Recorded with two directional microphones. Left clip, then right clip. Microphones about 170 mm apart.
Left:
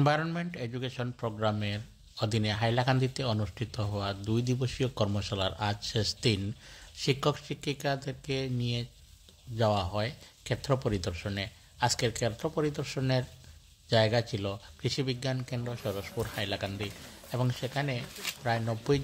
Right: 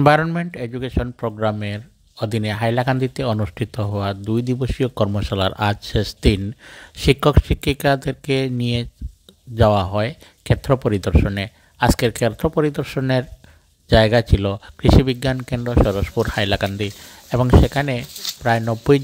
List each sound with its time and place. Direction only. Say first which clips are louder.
0.0 s speech: right 14 dB; 50° right (ahead or behind)